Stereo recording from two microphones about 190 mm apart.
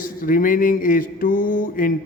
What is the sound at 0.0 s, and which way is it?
Mantra, 45° left (ahead or behind).